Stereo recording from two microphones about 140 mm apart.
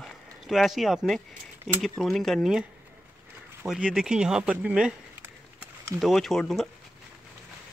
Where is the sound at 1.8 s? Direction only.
Centre (ahead or behind).